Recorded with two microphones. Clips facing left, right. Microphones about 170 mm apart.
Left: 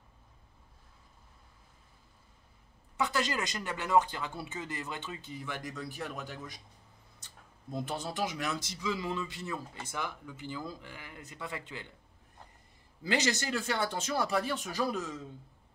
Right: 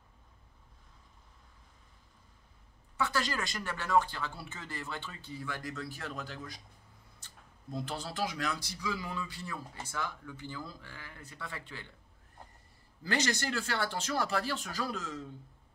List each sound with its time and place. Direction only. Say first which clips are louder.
3.0 s speech: left 2 dB; 20° left (ahead or behind)
13.0 s speech: left 1 dB; 15° left (ahead or behind)